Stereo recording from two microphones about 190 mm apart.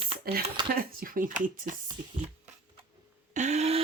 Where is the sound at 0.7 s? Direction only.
50° right (ahead or behind).